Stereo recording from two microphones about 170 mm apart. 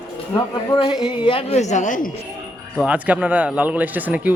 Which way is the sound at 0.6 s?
30° left (ahead or behind).